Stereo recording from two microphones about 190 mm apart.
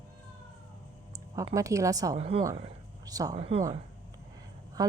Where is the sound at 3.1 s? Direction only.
20° right (ahead or behind).